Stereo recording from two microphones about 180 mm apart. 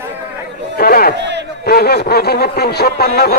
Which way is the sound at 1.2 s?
70° right (ahead or behind).